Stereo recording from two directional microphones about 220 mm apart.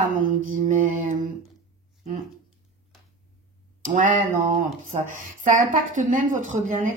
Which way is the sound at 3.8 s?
40° right (ahead or behind).